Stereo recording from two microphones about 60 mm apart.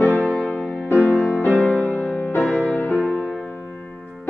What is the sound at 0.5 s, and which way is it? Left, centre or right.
Music, centre.